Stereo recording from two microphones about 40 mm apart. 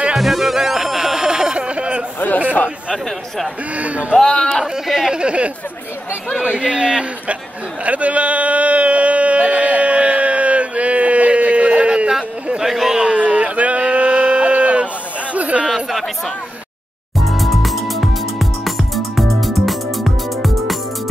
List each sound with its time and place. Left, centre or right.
0.2 s music: centre; by 2.0 s right
2.1 s a sound: left
3.7 s speech: right
4.2 s a man's voice: centre
4.8 s speech: centre
5.2 s a man's voice: right
6.6 s a man's voice: right
7.8 s a sound: right
15.7 s chatter: centre
17.2 s music: centre